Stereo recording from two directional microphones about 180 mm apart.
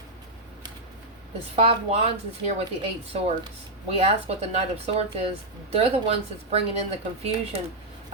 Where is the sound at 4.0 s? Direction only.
35° right (ahead or behind).